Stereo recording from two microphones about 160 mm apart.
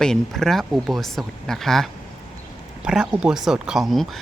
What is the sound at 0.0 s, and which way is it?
Speech, 5° left (ahead or behind).